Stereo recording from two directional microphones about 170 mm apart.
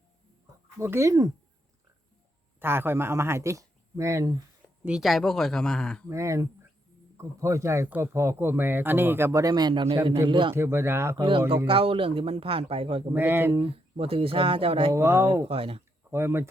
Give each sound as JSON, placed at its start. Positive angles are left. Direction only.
{"t": 0.8, "sound": "speech", "side_deg": -15}
{"t": 2.6, "sound": "speech", "side_deg": -15}
{"t": 4.9, "sound": "speech", "side_deg": 0}
{"t": 6.1, "sound": "speech", "side_deg": -15}
{"t": 10.5, "sound": "speech", "side_deg": -15}
{"t": 11.2, "sound": "speech", "side_deg": -30}
{"t": 13.1, "sound": "speech", "side_deg": -15}
{"t": 13.6, "sound": "speech", "side_deg": -35}
{"t": 14.9, "sound": "speech", "side_deg": -15}
{"t": 15.4, "sound": "speech", "side_deg": -35}
{"t": 16.0, "sound": "speech", "side_deg": -15}